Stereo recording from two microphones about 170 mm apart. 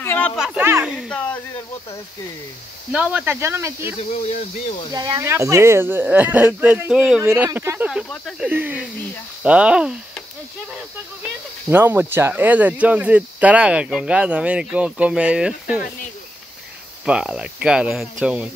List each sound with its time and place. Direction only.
0.0 s a sound: 10° left (ahead or behind)
0.4 s speech: 15° right (ahead or behind)
1.1 s speech: 10° left (ahead or behind)
2.9 s speech: 5° right (ahead or behind)
4.0 s speech: 40° left (ahead or behind)
4.9 s speech: 25° right (ahead or behind)
5.2 s speech: 15° right (ahead or behind)
7.9 s speech: centre (ahead or behind)
11.7 s speech: 10° right (ahead or behind)
17.0 s speech: 5° right (ahead or behind)